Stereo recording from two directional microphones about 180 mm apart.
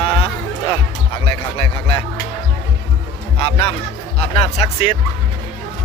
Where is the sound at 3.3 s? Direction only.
35° left (ahead or behind).